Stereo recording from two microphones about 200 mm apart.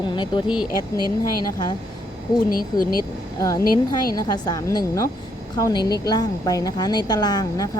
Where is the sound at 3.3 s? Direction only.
15° left (ahead or behind).